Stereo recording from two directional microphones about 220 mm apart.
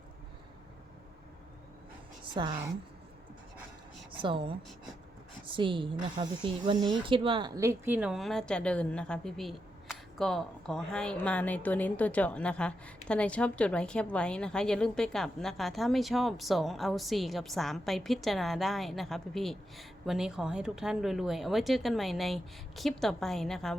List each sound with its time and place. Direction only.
2.3 s speech: 20° right (ahead or behind)
4.2 s speech: 25° right (ahead or behind)
5.5 s a woman's voice: 20° right (ahead or behind); by 23.7 s centre (ahead or behind)